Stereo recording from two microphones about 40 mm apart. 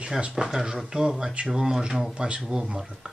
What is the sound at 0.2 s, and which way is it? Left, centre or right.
Speech, right.